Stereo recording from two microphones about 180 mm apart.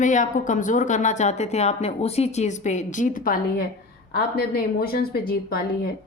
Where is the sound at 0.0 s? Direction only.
45° left (ahead or behind).